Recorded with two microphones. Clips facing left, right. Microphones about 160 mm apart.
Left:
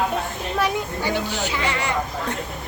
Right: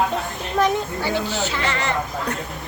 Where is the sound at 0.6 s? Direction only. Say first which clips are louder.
Right 2 dB; 15° left (ahead or behind).